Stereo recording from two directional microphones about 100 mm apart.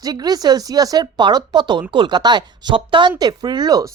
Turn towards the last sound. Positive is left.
turn(degrees=-45)  # may be behind; listen again after turning